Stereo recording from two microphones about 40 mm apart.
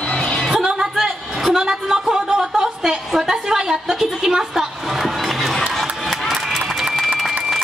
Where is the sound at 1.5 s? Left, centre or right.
Centre.